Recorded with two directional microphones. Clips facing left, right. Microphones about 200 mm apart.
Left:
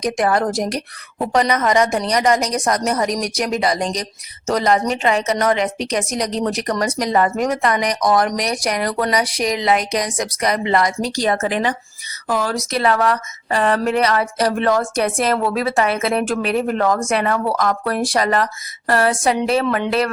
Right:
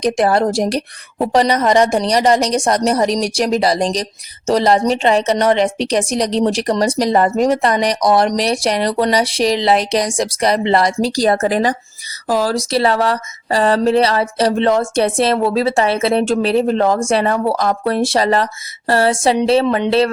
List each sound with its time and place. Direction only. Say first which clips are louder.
0.0 s a woman's voice: right 4 dB; 30° right (ahead or behind)